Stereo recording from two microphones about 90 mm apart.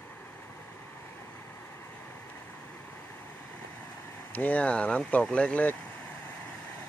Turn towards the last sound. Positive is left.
turn(degrees=15)  # may be behind; listen again after turning